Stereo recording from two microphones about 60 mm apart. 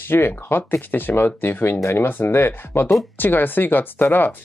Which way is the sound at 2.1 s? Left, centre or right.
Left.